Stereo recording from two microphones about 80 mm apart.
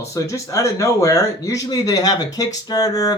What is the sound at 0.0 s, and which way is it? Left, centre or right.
Speech, left.